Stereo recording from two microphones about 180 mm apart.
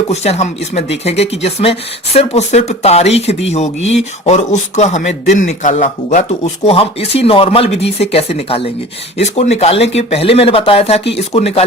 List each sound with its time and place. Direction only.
0.1 s a man's voice: 35° left (ahead or behind)
6.7 s speech: 35° left (ahead or behind)